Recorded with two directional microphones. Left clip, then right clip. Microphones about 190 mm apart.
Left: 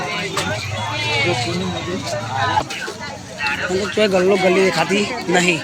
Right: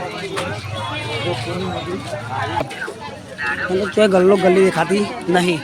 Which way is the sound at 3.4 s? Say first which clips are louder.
Even; 40° right (ahead or behind).